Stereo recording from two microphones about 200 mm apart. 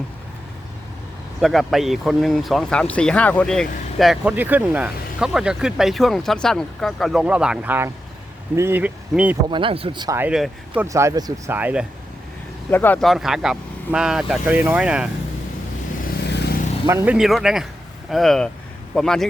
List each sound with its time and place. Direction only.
1.4 s speech: centre (ahead or behind)
9.5 s speech: 25° right (ahead or behind)
10.2 s speech: 5° right (ahead or behind)
10.8 s speech: 15° right (ahead or behind)
12.7 s speech: 10° left (ahead or behind)
16.2 s vehicle: 55° left (ahead or behind)
16.8 s speech: 15° right (ahead or behind)
17.2 s speech: centre (ahead or behind)